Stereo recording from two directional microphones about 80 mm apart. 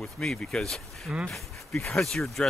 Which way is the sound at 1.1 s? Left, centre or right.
Centre.